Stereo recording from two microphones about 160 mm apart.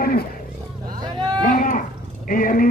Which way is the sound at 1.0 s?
25° right (ahead or behind).